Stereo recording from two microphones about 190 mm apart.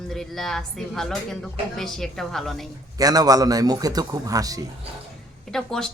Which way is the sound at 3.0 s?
20° right (ahead or behind).